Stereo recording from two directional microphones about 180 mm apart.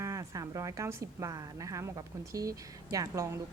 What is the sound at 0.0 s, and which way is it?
A woman's voice, 20° right (ahead or behind).